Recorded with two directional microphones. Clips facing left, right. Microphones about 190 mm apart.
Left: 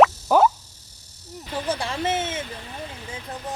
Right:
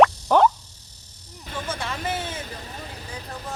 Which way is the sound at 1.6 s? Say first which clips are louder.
Left 4 dB; 30° left (ahead or behind).